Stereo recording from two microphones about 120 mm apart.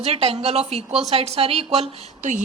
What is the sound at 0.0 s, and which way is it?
A woman's voice, 60° right (ahead or behind).